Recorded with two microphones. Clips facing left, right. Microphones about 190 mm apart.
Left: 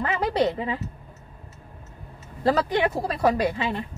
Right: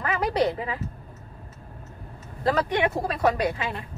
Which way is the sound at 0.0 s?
25° left (ahead or behind).